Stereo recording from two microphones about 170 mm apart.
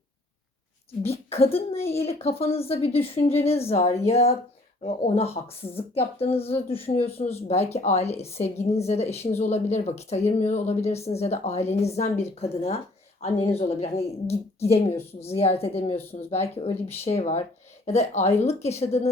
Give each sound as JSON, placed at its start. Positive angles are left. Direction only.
{"t": 1.0, "sound": "speech", "side_deg": 35}
{"t": 1.8, "sound": "a woman's voice", "side_deg": 15}
{"t": 2.4, "sound": "speech", "side_deg": 35}